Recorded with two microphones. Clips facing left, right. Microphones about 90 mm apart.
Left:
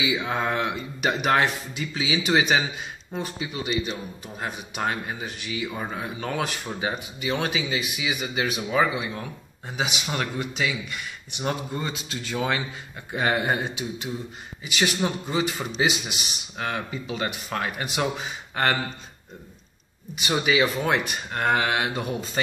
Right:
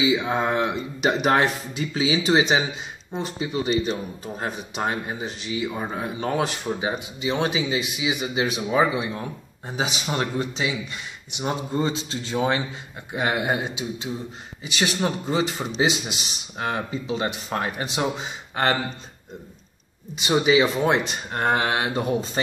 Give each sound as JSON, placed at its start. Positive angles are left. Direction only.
{"t": 0.0, "sound": "speech", "side_deg": -25}
{"t": 13.1, "sound": "a man's voice", "side_deg": -15}
{"t": 20.4, "sound": "speech", "side_deg": -25}